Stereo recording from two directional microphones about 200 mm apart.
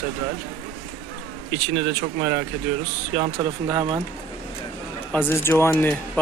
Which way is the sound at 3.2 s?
20° right (ahead or behind).